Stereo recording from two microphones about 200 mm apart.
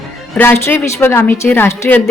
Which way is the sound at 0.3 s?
10° left (ahead or behind).